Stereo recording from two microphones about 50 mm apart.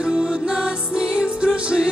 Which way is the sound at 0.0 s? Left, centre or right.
Centre.